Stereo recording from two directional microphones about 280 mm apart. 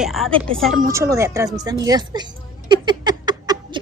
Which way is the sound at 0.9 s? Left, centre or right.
Centre.